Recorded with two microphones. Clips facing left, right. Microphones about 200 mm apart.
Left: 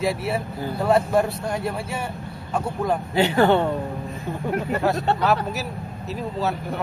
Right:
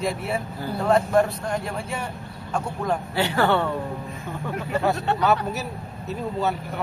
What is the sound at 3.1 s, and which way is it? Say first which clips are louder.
Speech: left 5 dB; 20° left (ahead or behind).